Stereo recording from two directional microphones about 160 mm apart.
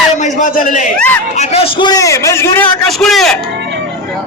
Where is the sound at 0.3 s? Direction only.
55° left (ahead or behind).